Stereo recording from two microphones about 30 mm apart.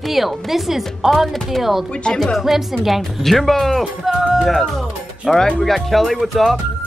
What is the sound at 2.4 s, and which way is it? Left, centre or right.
Speech, centre.